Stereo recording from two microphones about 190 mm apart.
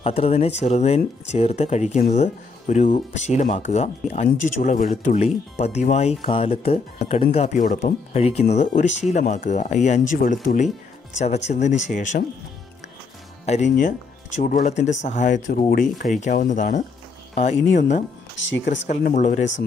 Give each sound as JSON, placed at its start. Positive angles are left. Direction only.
{"t": 0.0, "sound": "speech", "side_deg": 35}
{"t": 13.5, "sound": "speech", "side_deg": 40}
{"t": 18.5, "sound": "speech", "side_deg": 75}
{"t": 19.0, "sound": "speech", "side_deg": 40}